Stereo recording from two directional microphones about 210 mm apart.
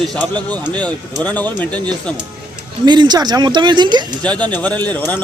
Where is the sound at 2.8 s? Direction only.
20° right (ahead or behind).